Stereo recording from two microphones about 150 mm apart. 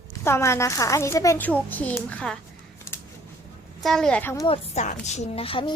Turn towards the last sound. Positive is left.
turn(degrees=35)  # may be behind; listen again after turning